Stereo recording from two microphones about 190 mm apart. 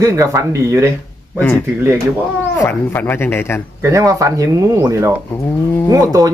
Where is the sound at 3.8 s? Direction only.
15° right (ahead or behind).